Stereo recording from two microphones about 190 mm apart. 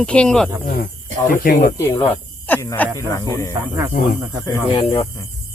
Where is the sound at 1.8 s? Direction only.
15° left (ahead or behind).